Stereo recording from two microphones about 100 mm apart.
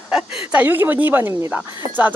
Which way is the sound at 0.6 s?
20° right (ahead or behind).